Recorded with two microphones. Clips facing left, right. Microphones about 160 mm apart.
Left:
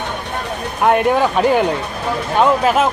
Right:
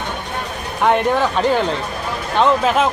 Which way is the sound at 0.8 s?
5° left (ahead or behind).